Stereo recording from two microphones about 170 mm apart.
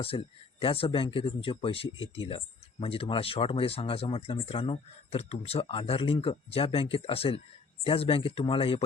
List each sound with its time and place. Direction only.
0.0 s speech: 35° left (ahead or behind)